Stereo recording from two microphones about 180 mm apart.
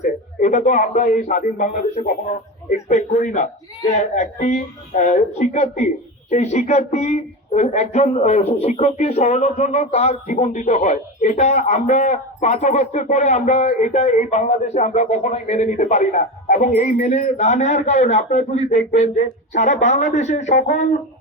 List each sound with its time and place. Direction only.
0.0 s a man's voice: 40° left (ahead or behind)